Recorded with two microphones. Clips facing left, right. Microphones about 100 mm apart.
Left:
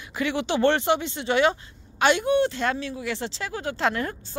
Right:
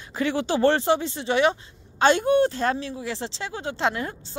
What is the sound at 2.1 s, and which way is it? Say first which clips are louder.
Speech: right 2 dB; 40° right (ahead or behind).